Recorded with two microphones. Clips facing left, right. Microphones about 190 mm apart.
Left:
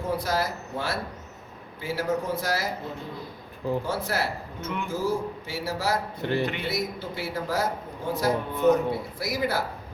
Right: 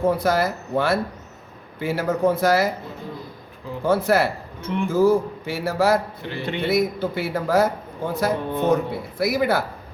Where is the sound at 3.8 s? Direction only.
60° right (ahead or behind).